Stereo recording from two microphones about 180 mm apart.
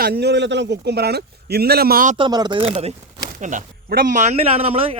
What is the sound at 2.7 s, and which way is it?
A man's voice, 35° right (ahead or behind).